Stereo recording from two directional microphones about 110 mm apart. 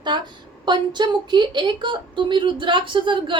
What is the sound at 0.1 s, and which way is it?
A woman's voice, 45° right (ahead or behind).